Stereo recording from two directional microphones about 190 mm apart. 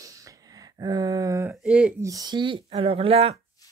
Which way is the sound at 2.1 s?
20° right (ahead or behind).